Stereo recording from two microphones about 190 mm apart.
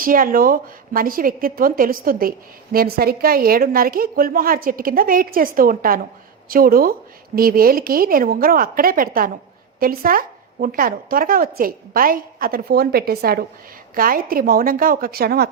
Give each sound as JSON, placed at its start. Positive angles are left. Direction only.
{"t": 0.0, "sound": "speech", "side_deg": -50}